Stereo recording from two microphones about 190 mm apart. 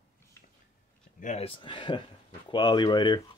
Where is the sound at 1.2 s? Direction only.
35° left (ahead or behind).